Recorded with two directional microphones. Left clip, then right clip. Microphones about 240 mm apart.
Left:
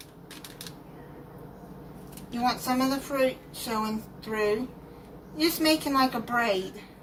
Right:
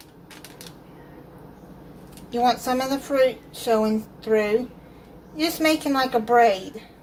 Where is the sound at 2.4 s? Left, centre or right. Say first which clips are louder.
Right 5 dB; right.